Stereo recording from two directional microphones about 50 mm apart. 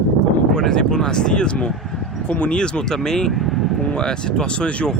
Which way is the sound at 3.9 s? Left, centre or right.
Centre.